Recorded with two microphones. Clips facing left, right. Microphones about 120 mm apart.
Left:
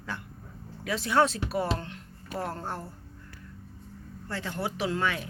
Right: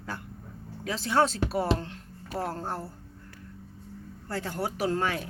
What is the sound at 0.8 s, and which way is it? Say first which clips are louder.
Speech: left 1 dB; 30° right (ahead or behind).